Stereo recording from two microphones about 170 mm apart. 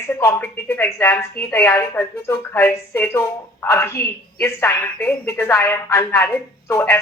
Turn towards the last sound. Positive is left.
turn(degrees=15)  # may be behind; listen again after turning